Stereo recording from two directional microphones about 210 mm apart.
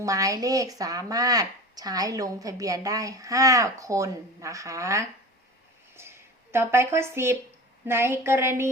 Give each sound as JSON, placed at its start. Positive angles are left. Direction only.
{"t": 0.0, "sound": "speech", "side_deg": -15}